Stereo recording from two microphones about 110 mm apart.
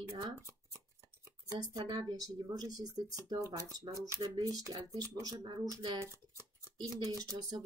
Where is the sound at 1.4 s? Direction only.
35° right (ahead or behind).